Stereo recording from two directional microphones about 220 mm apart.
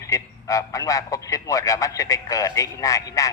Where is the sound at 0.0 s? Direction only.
15° left (ahead or behind).